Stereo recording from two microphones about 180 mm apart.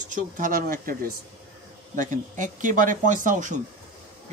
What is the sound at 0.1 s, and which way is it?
A man's voice, 50° right (ahead or behind).